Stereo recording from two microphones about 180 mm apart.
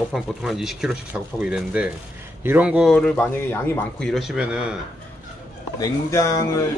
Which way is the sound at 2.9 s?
5° left (ahead or behind).